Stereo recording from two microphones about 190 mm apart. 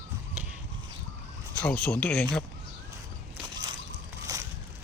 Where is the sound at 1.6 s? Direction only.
10° left (ahead or behind).